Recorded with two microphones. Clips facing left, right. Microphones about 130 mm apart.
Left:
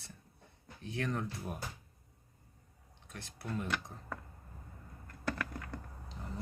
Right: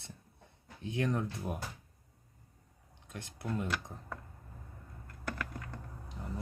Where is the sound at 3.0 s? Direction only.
15° right (ahead or behind).